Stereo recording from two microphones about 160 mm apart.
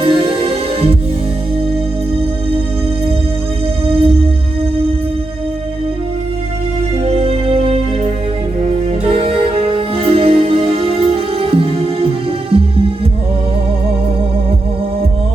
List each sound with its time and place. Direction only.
0.0 s music: 35° right (ahead or behind)
3.8 s music: 35° right (ahead or behind)
7.0 s music: 40° right (ahead or behind)
9.0 s music: 35° right (ahead or behind)